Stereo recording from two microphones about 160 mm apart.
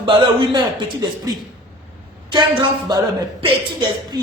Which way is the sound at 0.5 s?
25° right (ahead or behind).